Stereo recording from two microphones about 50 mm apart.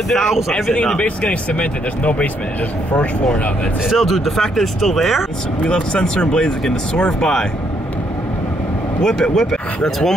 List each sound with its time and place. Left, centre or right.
0.9 s speech: left
3.9 s speech: centre
5.6 s speech: left
9.0 s speech: centre